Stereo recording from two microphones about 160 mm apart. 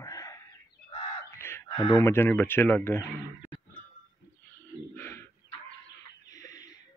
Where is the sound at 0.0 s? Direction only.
20° left (ahead or behind).